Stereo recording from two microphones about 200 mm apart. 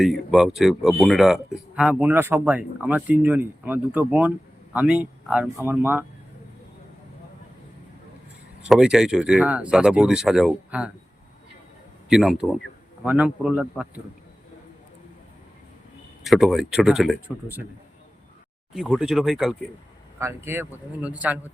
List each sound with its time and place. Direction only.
0.0 s speech: centre (ahead or behind)
8.6 s speech: 5° right (ahead or behind)
12.0 s speech: centre (ahead or behind)
16.2 s speech: centre (ahead or behind)
18.7 s speech: centre (ahead or behind)
20.1 s speech: 15° right (ahead or behind)